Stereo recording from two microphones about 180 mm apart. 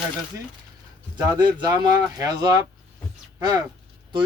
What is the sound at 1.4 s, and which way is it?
Speech, 25° right (ahead or behind).